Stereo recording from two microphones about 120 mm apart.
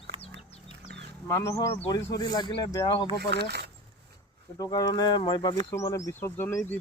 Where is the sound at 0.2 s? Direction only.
55° left (ahead or behind).